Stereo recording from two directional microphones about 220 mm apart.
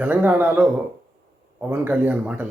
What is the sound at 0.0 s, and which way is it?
Speech, 5° right (ahead or behind).